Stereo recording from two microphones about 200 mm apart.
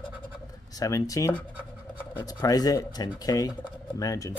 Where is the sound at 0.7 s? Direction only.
15° left (ahead or behind).